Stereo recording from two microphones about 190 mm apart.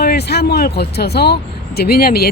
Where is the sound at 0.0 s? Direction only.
55° left (ahead or behind).